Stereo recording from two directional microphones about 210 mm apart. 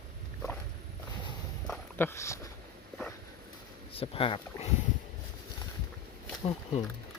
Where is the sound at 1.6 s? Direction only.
5° left (ahead or behind).